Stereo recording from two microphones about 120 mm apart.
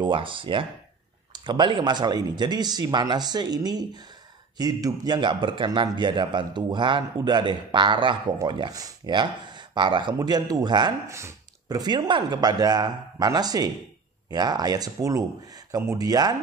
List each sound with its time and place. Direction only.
0.0 s a man's voice: 45° right (ahead or behind)
11.1 s a sound: 25° right (ahead or behind)
11.8 s a man's voice: 35° right (ahead or behind)